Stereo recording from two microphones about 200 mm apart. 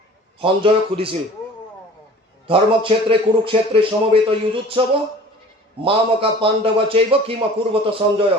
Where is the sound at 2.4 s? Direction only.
25° right (ahead or behind).